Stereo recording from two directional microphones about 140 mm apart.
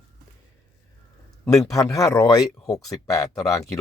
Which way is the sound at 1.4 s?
25° left (ahead or behind).